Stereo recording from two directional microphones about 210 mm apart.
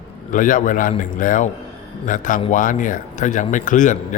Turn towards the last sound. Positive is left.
turn(degrees=35)  # may be behind; listen again after turning